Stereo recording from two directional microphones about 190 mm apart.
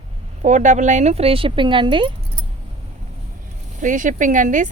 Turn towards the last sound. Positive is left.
turn(degrees=-40)  # may be behind; listen again after turning